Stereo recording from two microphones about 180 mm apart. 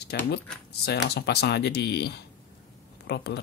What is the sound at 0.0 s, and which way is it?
Speech, 65° left (ahead or behind).